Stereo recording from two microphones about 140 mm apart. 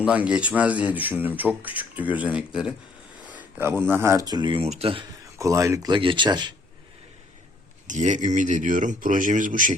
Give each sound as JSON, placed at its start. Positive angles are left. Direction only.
{"t": 0.0, "sound": "speech", "side_deg": -10}
{"t": 4.3, "sound": "speech", "side_deg": -30}
{"t": 4.6, "sound": "speech", "side_deg": -45}
{"t": 5.4, "sound": "speech", "side_deg": -20}
{"t": 5.9, "sound": "speech", "side_deg": -35}
{"t": 7.9, "sound": "speech", "side_deg": -60}